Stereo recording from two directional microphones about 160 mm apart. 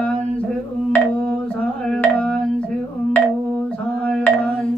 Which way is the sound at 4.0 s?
5° left (ahead or behind).